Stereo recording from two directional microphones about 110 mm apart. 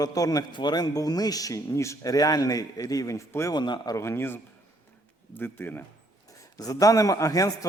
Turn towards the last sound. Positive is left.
turn(degrees=30)  # may be behind; listen again after turning